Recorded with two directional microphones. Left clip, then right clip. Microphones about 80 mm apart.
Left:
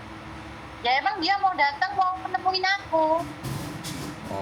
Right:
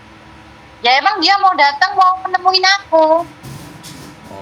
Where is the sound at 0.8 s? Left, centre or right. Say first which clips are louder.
Right 12 dB; right.